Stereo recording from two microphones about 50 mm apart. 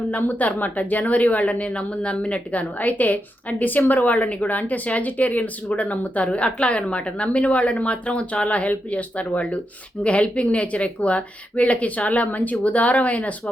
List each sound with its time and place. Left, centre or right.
0.1 s a woman's voice: left